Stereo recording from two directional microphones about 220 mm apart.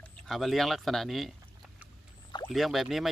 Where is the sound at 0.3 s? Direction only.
Centre (ahead or behind).